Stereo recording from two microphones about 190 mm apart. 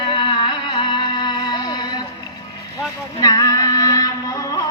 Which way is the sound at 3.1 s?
20° left (ahead or behind).